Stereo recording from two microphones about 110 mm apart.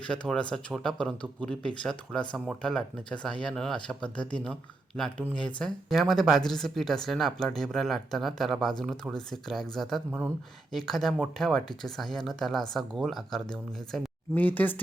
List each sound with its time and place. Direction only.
0.0 s speech: 10° left (ahead or behind)
10.1 s speech: 15° right (ahead or behind)
10.7 s speech: centre (ahead or behind)
14.3 s speech: 15° left (ahead or behind)